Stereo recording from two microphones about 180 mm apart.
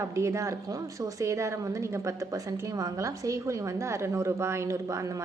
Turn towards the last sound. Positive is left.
turn(degrees=-20)  # may be behind; listen again after turning